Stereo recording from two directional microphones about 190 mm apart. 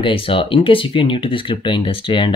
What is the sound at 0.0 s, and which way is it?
Speech, 25° left (ahead or behind).